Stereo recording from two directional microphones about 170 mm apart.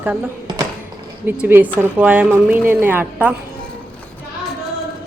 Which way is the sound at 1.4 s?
10° right (ahead or behind).